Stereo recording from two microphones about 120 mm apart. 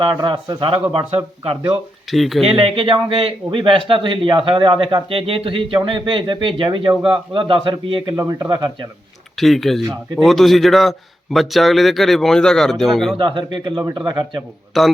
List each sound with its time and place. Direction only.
0.0 s speech: 40° right (ahead or behind)
0.7 s a man's voice: 55° right (ahead or behind)
2.0 s a man's voice: centre (ahead or behind)
2.4 s a man's voice: 55° right (ahead or behind)
8.1 s speech: 30° right (ahead or behind)
9.4 s a man's voice: centre (ahead or behind)
13.1 s speech: 40° right (ahead or behind)
14.7 s a man's voice: centre (ahead or behind)